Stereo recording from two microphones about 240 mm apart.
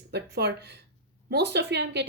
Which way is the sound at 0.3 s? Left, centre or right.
Right.